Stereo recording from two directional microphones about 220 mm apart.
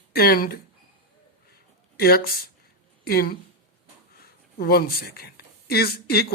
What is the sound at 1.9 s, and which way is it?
Speech, 45° left (ahead or behind).